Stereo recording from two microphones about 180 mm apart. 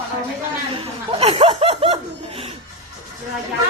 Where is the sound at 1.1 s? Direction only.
35° right (ahead or behind).